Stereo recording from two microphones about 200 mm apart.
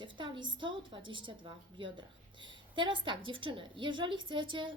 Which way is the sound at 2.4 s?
25° right (ahead or behind).